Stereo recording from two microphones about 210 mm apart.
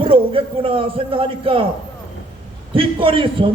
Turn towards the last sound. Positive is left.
turn(degrees=-25)  # may be behind; listen again after turning